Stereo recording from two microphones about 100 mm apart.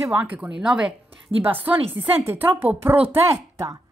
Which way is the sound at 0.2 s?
15° right (ahead or behind).